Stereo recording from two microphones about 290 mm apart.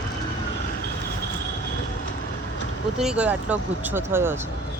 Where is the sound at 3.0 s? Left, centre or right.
Centre.